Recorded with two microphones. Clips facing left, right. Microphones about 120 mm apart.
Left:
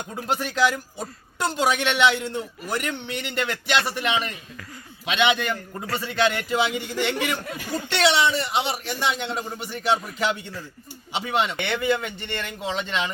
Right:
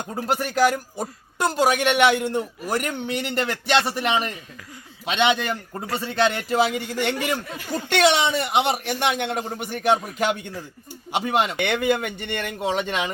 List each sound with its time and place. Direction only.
0.1 s a man's voice: 40° right (ahead or behind)